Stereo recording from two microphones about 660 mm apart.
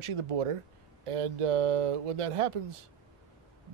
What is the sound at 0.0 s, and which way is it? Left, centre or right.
Speech, right.